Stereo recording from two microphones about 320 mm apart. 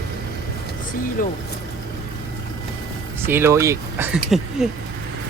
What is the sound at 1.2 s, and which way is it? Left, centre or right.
Speech, left.